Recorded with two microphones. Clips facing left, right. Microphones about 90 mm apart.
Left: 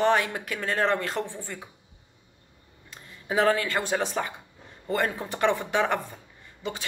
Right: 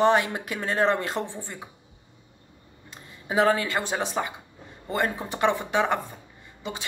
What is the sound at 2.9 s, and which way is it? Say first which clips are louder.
Speech: left 1 dB; 20° right (ahead or behind).